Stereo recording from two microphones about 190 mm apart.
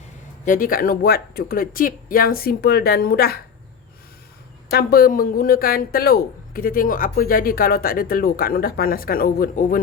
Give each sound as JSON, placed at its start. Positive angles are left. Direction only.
{"t": 0.4, "sound": "speech", "side_deg": 45}
{"t": 4.7, "sound": "speech", "side_deg": 50}